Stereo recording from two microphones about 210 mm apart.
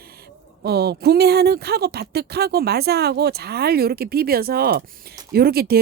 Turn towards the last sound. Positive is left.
turn(degrees=-45)  # may be behind; listen again after turning